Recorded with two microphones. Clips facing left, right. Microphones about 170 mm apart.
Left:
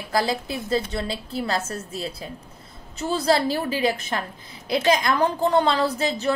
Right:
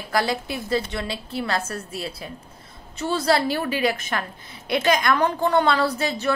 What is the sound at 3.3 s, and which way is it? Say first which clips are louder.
A woman's voice: even; 35° left (ahead or behind).